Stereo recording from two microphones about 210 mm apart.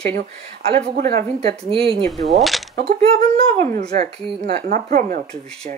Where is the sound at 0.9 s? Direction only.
45° right (ahead or behind).